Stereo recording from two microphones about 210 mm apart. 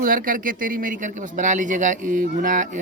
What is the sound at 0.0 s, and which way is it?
Speech, 40° right (ahead or behind).